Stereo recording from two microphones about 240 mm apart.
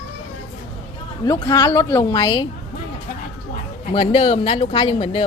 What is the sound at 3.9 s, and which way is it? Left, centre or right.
Speech, centre.